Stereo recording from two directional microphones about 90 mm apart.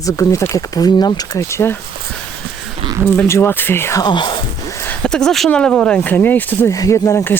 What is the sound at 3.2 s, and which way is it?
Speech, 30° left (ahead or behind).